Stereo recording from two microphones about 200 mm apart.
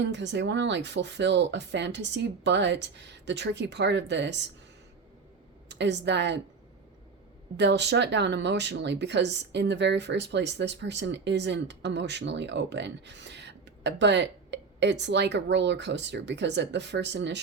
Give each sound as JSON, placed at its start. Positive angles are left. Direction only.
{"t": 0.0, "sound": "speech", "side_deg": -60}
{"t": 5.6, "sound": "a woman's voice", "side_deg": -60}
{"t": 7.5, "sound": "speech", "side_deg": -60}